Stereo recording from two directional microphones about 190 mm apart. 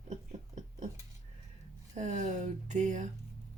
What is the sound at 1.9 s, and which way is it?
Speech, 40° right (ahead or behind).